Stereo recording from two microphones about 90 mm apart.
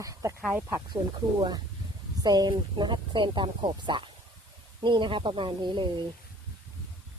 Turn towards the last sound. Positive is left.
turn(degrees=-60)  # may be behind; listen again after turning